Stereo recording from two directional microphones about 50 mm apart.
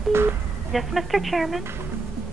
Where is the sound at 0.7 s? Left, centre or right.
Centre.